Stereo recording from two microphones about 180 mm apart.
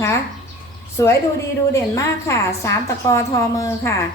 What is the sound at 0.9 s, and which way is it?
A woman's voice, 15° left (ahead or behind).